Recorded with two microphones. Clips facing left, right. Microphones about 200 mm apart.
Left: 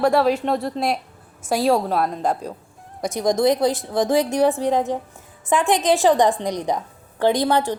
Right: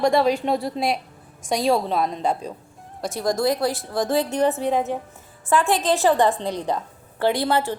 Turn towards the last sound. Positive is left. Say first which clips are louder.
# left 2 dB
turn(degrees=15)  # may be behind; listen again after turning